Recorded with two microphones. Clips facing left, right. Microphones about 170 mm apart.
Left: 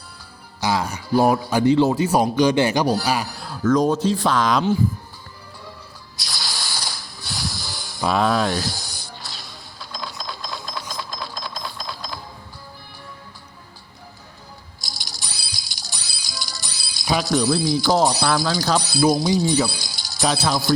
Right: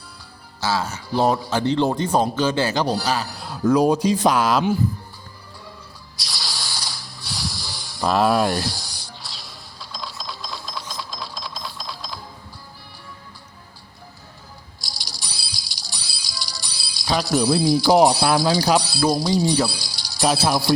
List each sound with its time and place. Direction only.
0.6 s speech: 15° left (ahead or behind)
1.1 s speech: 5° left (ahead or behind)
3.3 s a sound: centre (ahead or behind)
3.6 s speech: 10° right (ahead or behind)
6.1 s snake: centre (ahead or behind)
14.8 s music: centre (ahead or behind)
18.0 s speech: centre (ahead or behind)